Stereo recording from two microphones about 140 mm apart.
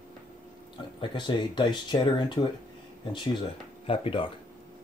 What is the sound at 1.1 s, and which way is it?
Speech, 35° left (ahead or behind).